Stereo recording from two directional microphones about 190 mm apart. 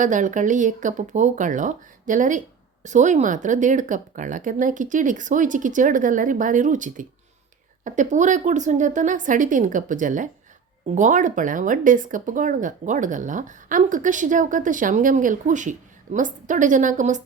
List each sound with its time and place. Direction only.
0.0 s a woman's voice: 40° right (ahead or behind)